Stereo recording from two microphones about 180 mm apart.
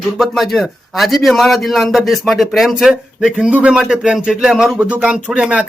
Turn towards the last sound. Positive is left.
turn(degrees=-5)  # may be behind; listen again after turning